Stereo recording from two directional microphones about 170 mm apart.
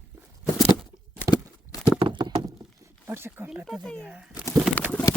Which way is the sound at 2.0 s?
30° right (ahead or behind).